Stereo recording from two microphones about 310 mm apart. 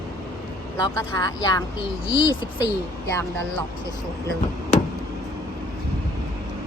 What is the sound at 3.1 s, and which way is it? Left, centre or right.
Speech, centre.